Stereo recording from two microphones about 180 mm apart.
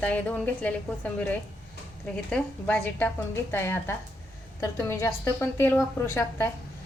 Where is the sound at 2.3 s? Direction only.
5° left (ahead or behind).